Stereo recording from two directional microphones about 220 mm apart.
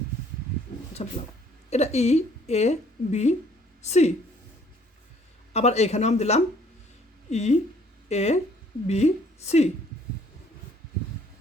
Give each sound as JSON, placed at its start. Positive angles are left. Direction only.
{"t": 1.0, "sound": "a woman's voice", "side_deg": 30}
{"t": 5.5, "sound": "a woman's voice", "side_deg": 30}